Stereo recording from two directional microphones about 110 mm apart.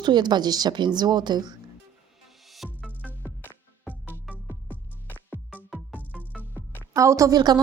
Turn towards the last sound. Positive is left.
turn(degrees=-35)  # may be behind; listen again after turning